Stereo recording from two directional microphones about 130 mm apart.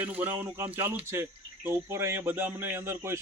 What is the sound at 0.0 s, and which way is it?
Speech, 10° right (ahead or behind).